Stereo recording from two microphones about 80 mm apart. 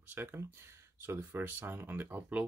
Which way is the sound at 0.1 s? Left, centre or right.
Right.